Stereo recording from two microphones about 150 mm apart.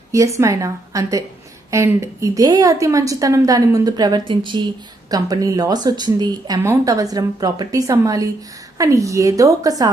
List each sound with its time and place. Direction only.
0.1 s a woman's voice: 20° right (ahead or behind)